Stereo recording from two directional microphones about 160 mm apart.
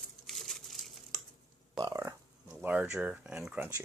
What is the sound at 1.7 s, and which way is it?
Burping, 20° right (ahead or behind).